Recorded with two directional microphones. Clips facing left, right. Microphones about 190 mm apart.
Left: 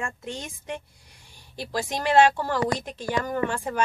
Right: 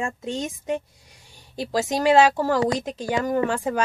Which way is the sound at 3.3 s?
25° right (ahead or behind).